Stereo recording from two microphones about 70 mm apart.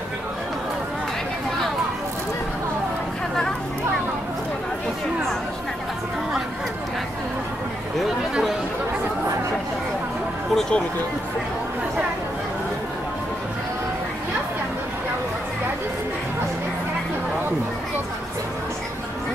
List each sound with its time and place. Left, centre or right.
10.5 s speech: centre